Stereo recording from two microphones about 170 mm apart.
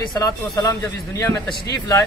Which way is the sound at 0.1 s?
20° left (ahead or behind).